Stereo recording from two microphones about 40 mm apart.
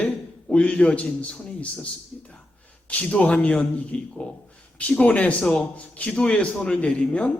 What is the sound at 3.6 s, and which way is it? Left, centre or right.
A man's voice, left.